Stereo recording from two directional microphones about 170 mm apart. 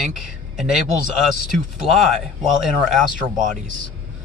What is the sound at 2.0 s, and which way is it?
Speech, centre (ahead or behind).